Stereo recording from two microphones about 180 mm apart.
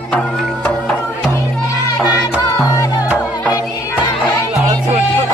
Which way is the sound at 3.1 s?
10° right (ahead or behind).